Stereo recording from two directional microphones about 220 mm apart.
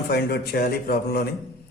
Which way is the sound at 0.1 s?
45° left (ahead or behind).